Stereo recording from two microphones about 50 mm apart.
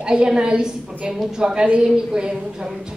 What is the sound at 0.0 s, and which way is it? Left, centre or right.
Speech, centre.